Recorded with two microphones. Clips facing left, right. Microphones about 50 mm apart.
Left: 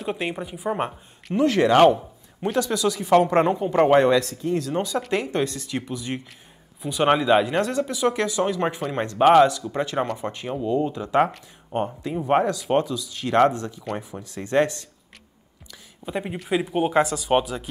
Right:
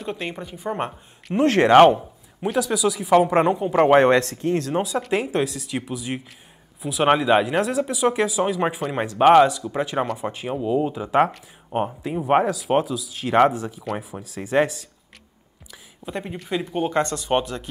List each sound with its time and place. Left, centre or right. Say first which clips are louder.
0.0 s speech: left 2 dB; centre
1.4 s speech: right 3 dB; right
2.4 s speech: right 1 dB; centre
4.0 s speech: right 2 dB; right
4.7 s speech: right 2 dB; centre
16.1 s speech: left 2 dB; centre